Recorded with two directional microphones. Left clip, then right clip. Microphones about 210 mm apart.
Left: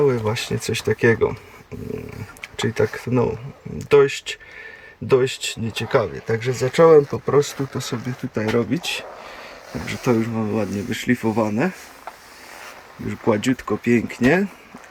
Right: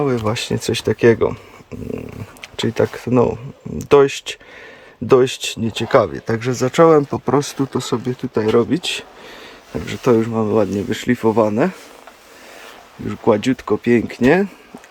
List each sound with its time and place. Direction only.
0.1 s speech: 15° right (ahead or behind)
2.6 s speech: 15° right (ahead or behind)
13.1 s speech: 10° right (ahead or behind)